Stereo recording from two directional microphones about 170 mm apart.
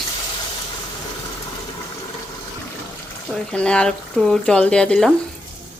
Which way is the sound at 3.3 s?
5° left (ahead or behind).